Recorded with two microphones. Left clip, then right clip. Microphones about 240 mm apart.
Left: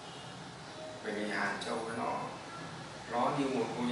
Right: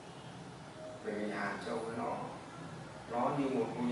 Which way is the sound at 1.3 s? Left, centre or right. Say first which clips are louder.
Left 3 dB; centre.